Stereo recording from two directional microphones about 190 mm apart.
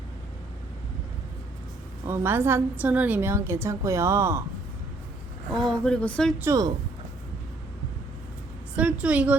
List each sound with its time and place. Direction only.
2.0 s a woman's voice: 15° right (ahead or behind)
5.5 s speech: centre (ahead or behind)
6.4 s a woman's voice: 15° right (ahead or behind)
8.7 s a woman's voice: 5° right (ahead or behind)